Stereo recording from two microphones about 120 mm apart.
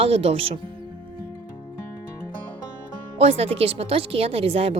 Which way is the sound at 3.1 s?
60° right (ahead or behind).